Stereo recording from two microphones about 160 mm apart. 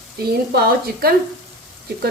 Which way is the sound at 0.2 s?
70° right (ahead or behind).